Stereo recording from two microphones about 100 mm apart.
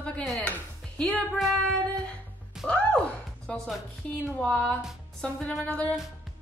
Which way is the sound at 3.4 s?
5° left (ahead or behind).